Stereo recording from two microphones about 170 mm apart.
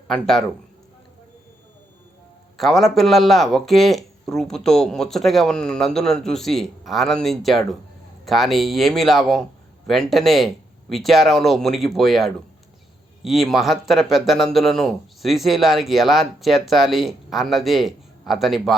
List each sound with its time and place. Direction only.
0.1 s speech: centre (ahead or behind)
2.6 s speech: centre (ahead or behind)